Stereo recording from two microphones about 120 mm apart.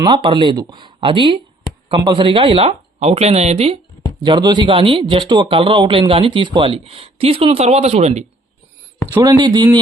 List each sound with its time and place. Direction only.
0.1 s speech: 40° right (ahead or behind); by 3.8 s 55° right (ahead or behind)
4.2 s speech: 40° right (ahead or behind); by 8.2 s 60° right (ahead or behind)
9.2 s speech: 30° right (ahead or behind)